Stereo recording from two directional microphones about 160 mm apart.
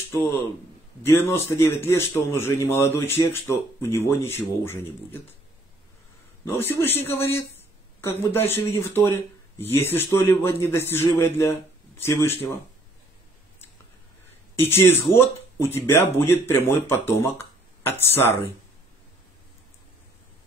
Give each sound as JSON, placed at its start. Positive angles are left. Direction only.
{"t": 0.2, "sound": "speech", "side_deg": 15}
{"t": 6.4, "sound": "speech", "side_deg": 15}
{"t": 14.5, "sound": "speech", "side_deg": 15}